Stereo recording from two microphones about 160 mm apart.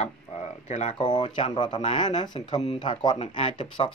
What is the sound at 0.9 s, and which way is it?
Speech, 25° left (ahead or behind).